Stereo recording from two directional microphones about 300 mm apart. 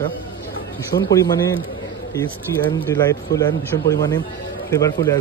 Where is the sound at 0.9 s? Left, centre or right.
Left.